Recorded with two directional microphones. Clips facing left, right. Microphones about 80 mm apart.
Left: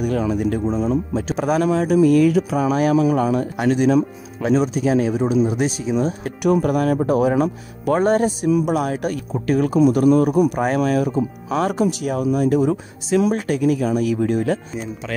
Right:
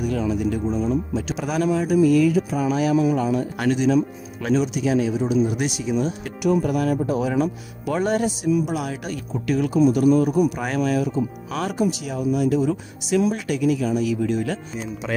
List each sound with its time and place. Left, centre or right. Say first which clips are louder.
0.0 s speech: left 3 dB; left
0.7 s speech: left 2 dB; left
1.7 s speech: left 1 dB; left
5.3 s speech: left 3 dB; left
6.4 s speech: left 3 dB; left
7.2 s speech: left 4 dB; left
10.8 s speech: right 1 dB; left
11.4 s speech: left 6 dB; left
12.0 s speech: left 3 dB; left
14.8 s speech: even; centre